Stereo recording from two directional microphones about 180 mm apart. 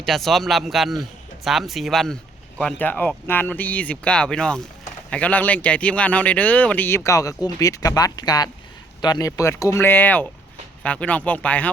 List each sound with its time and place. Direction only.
0.0 s speech: centre (ahead or behind)